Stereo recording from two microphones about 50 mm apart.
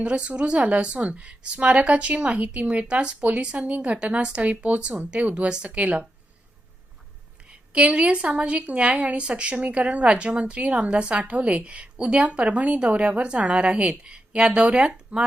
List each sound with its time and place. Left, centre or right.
0.0 s speech: right
7.7 s speech: right